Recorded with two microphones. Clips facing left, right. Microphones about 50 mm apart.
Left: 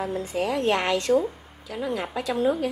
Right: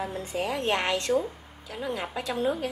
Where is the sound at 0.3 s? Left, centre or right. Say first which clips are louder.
Left 4 dB; centre.